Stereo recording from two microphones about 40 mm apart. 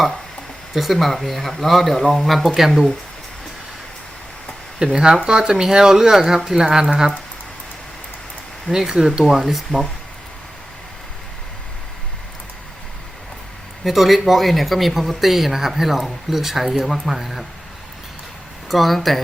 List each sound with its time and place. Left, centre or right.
0.7 s speech: centre
4.8 s speech: right
8.7 s speech: centre
13.8 s speech: centre
18.7 s speech: centre